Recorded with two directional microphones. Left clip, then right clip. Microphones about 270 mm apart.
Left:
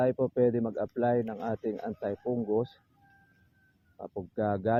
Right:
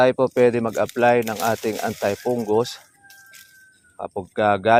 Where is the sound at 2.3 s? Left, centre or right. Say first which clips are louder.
Right 8 dB; right.